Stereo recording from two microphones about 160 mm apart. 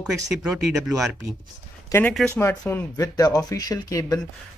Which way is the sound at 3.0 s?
25° left (ahead or behind).